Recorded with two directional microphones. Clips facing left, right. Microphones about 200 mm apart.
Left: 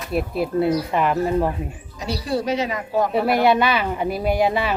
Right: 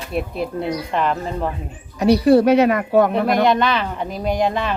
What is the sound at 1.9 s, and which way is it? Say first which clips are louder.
Speech: right 12 dB; 60° right (ahead or behind).